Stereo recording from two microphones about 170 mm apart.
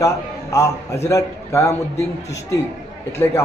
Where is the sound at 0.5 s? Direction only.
15° left (ahead or behind).